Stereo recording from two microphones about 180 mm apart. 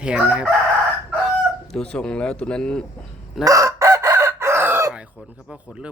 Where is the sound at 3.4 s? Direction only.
15° right (ahead or behind).